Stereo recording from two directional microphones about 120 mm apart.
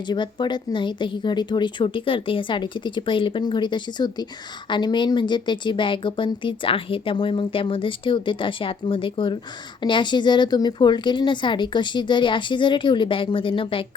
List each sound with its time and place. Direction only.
0.1 s speech: 40° left (ahead or behind)